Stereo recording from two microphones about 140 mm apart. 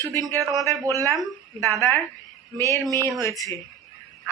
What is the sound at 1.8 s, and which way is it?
A man's voice, 15° left (ahead or behind).